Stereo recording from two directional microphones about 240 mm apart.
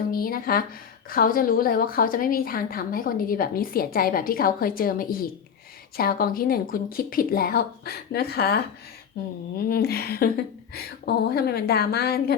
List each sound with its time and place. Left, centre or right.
0.1 s a woman's voice: left
9.2 s a sound: left
9.6 s a woman's voice: left